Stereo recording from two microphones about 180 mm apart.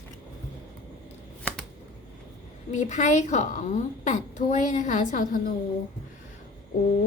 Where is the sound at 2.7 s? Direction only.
40° left (ahead or behind).